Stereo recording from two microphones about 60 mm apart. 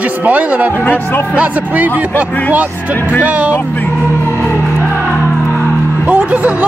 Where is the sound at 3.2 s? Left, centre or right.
Right.